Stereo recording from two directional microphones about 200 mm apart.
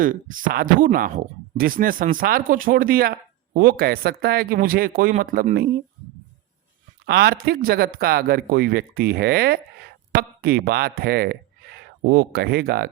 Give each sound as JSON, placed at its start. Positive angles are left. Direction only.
{"t": 0.0, "sound": "speech", "side_deg": -45}
{"t": 7.0, "sound": "speech", "side_deg": -55}